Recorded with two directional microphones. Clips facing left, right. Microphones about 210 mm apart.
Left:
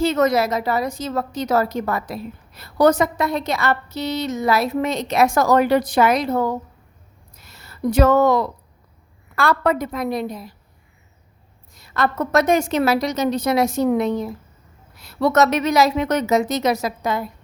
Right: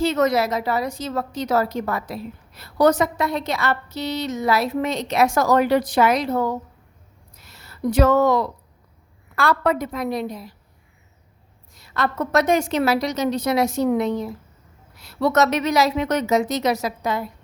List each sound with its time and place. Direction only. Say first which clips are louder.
0.0 s a woman's voice: left 2 dB; 50° left (ahead or behind)
7.3 s a sound: left 1 dB; 50° left (ahead or behind)
9.3 s a woman's voice: left 1 dB; 50° left (ahead or behind)
11.7 s a woman's voice: left 3 dB; 45° left (ahead or behind)